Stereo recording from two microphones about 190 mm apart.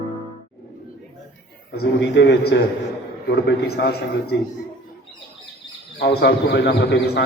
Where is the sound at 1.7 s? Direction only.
60° left (ahead or behind).